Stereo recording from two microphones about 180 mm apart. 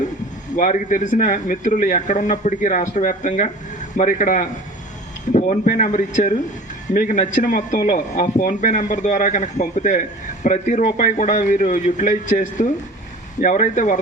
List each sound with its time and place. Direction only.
0.5 s a man's voice: 45° left (ahead or behind)